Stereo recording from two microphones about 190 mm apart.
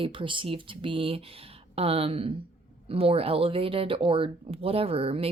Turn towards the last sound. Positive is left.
turn(degrees=-30)  # may be behind; listen again after turning